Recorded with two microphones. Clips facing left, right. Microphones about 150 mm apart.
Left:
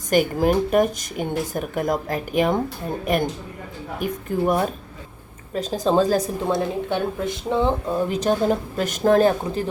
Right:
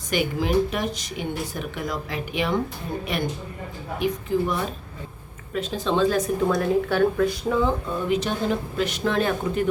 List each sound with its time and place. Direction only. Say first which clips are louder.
0.1 s speech: left 4 dB; 45° left (ahead or behind)